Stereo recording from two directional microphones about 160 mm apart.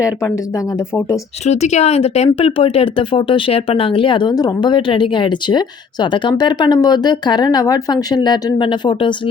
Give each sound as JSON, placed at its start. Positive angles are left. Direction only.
{"t": 0.0, "sound": "speech", "side_deg": 20}
{"t": 1.5, "sound": "speech", "side_deg": 45}